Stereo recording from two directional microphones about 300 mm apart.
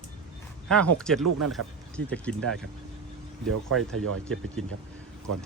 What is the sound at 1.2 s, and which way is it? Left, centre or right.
Speech, right.